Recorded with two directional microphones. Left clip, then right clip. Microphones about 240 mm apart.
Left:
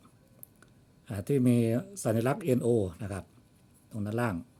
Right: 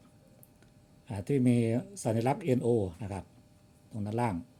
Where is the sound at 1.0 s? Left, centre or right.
Centre.